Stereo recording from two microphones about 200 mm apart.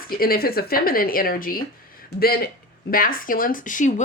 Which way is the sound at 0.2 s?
50° left (ahead or behind).